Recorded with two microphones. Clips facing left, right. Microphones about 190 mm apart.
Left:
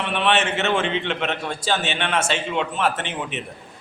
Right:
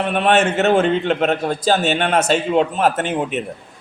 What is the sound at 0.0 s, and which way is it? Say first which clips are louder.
A man's voice: right 6 dB; 40° right (ahead or behind).